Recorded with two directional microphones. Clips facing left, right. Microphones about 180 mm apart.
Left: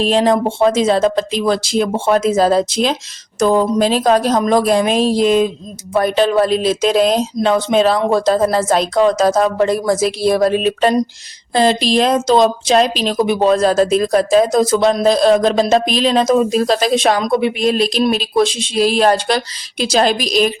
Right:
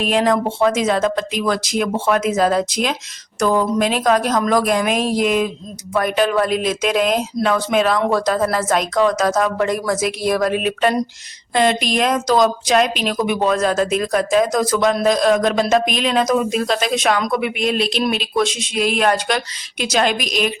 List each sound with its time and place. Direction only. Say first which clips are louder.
0.0 s speech: left 3 dB; 30° left (ahead or behind)